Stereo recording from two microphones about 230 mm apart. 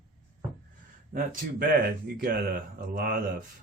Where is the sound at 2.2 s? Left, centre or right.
Right.